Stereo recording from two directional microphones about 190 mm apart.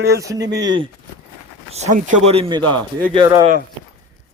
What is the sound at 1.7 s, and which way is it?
Speech, 40° right (ahead or behind).